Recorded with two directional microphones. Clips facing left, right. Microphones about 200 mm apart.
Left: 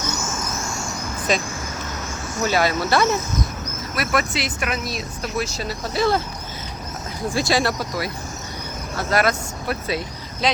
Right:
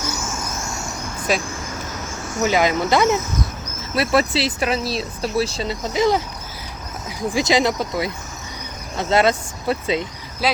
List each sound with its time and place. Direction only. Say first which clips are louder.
1.3 s speech: right 1 dB; 5° right (ahead or behind)
3.9 s speech: right 5 dB; 30° right (ahead or behind)
7.3 s speech: right 3 dB; 20° right (ahead or behind)
10.4 s speech: right 1 dB; 5° right (ahead or behind)